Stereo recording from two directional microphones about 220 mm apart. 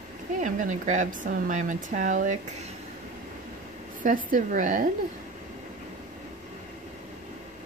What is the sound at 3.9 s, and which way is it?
Speech, 35° right (ahead or behind).